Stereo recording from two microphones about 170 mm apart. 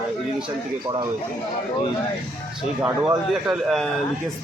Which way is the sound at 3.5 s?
Centre (ahead or behind).